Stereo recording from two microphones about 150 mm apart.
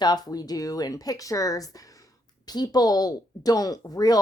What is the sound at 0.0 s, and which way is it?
Speech, 25° left (ahead or behind).